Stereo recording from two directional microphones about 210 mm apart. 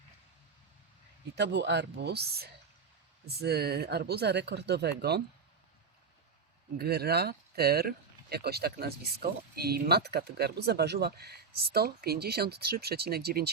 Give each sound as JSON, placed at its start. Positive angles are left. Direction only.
{"t": 1.4, "sound": "speech", "side_deg": -55}
{"t": 6.7, "sound": "speech", "side_deg": -50}